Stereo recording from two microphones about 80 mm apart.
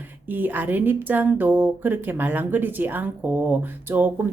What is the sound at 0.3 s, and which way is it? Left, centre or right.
A woman's voice, right.